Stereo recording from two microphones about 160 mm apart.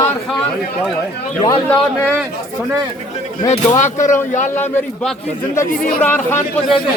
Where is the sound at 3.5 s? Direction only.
45° left (ahead or behind).